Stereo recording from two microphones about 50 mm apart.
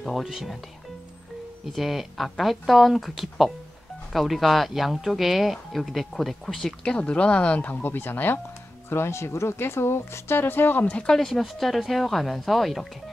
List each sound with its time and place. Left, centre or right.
0.2 s speech: centre
1.7 s speech: centre
6.8 s speech: centre
7.8 s speech: left
8.8 s speech: left
11.1 s speech: centre